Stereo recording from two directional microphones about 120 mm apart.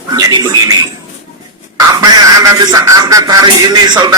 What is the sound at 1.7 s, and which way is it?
A man's voice, 30° right (ahead or behind).